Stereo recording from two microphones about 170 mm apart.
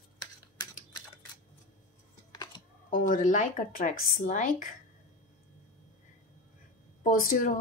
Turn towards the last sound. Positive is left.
turn(degrees=55)  # may be behind; listen again after turning